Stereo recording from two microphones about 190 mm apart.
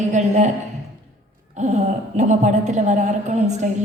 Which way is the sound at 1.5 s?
40° right (ahead or behind).